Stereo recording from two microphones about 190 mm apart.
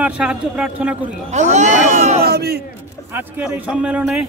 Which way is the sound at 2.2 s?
55° right (ahead or behind).